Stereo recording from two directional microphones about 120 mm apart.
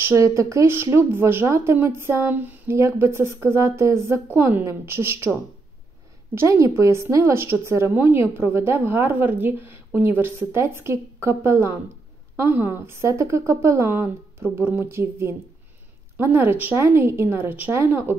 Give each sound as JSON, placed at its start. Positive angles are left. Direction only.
{"t": 0.0, "sound": "a woman's voice", "side_deg": -25}